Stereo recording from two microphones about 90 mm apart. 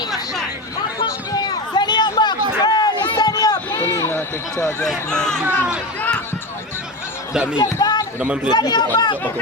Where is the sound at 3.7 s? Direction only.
25° left (ahead or behind).